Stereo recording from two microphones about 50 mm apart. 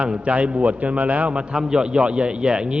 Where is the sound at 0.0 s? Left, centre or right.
Right.